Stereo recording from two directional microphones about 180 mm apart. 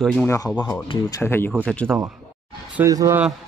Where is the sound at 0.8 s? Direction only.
20° left (ahead or behind).